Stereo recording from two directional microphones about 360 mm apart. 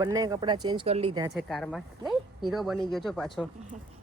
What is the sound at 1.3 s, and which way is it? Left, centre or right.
Speech, centre.